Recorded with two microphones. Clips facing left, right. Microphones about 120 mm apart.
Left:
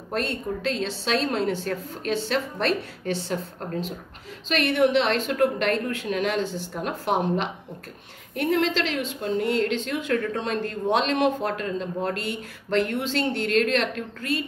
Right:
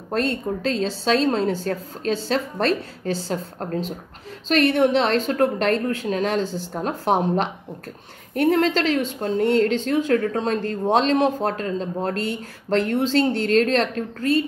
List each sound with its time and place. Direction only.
0.1 s a woman's voice: 40° right (ahead or behind)